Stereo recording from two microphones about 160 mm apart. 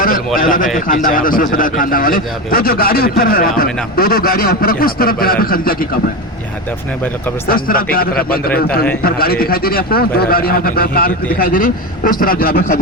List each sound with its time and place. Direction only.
0.3 s a man's voice: 60° left (ahead or behind)
7.4 s a man's voice: 65° left (ahead or behind)